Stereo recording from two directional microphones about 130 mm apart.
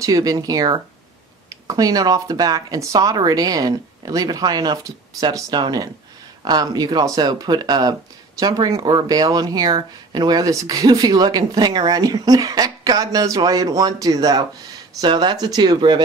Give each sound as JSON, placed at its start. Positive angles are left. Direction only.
{"t": 0.0, "sound": "speech", "side_deg": -25}